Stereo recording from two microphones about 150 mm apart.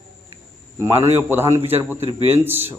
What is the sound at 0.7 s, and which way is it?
A man's voice, 20° right (ahead or behind).